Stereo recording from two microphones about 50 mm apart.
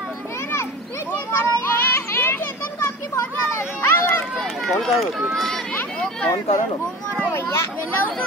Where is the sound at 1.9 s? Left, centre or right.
Left.